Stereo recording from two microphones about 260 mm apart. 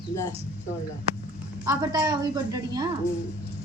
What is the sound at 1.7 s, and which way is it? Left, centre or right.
Speech, centre.